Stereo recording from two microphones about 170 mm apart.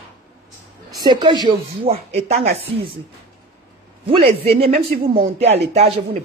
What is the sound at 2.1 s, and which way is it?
Speech, 40° right (ahead or behind).